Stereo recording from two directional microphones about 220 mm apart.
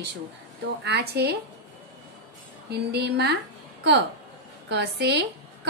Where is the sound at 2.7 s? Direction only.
45° right (ahead or behind).